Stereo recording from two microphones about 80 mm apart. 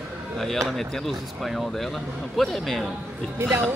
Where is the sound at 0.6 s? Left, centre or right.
Centre.